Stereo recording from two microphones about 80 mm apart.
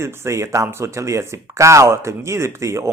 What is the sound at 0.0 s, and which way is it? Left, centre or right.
A man's voice, right.